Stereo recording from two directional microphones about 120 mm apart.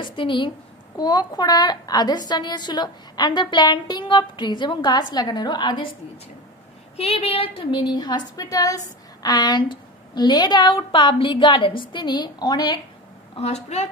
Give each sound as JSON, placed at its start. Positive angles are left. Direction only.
{"t": 0.0, "sound": "a woman's voice", "side_deg": 45}
{"t": 7.0, "sound": "a woman's voice", "side_deg": 55}